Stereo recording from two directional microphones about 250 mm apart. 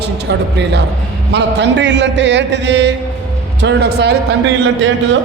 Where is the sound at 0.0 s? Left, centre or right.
Right.